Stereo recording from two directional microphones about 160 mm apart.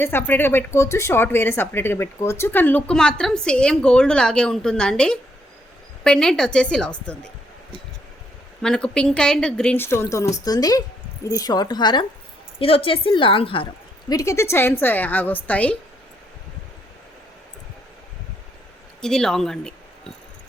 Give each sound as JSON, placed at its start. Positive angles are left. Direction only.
{"t": 0.0, "sound": "a woman's voice", "side_deg": 15}
{"t": 8.6, "sound": "a woman's voice", "side_deg": 5}
{"t": 14.1, "sound": "speech", "side_deg": 20}
{"t": 19.0, "sound": "a woman's voice", "side_deg": 5}